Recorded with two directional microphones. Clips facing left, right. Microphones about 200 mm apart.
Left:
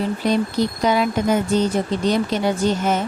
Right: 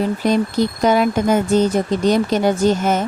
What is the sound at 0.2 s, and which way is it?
Speech, 45° right (ahead or behind).